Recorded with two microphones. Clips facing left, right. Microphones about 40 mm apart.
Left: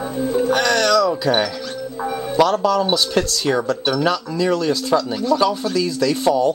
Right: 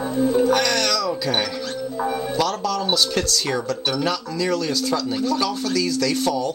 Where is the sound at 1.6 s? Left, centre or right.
Centre.